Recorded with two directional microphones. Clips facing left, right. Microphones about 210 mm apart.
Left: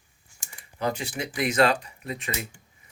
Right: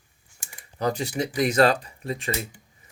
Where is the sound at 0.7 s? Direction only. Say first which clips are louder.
Right 3 dB; 35° right (ahead or behind).